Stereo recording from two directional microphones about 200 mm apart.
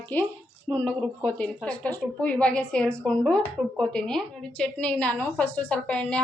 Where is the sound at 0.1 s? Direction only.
10° left (ahead or behind).